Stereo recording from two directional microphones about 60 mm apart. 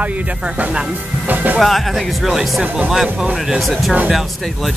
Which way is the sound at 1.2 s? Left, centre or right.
Right.